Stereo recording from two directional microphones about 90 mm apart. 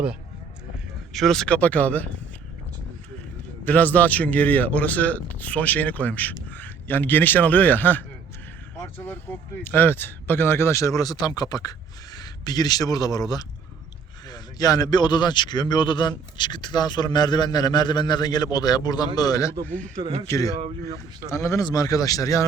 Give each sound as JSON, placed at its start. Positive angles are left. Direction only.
{"t": 1.1, "sound": "a man's voice", "side_deg": 5}
{"t": 3.6, "sound": "a man's voice", "side_deg": 20}
{"t": 19.6, "sound": "speech", "side_deg": 20}
{"t": 20.2, "sound": "speech", "side_deg": 40}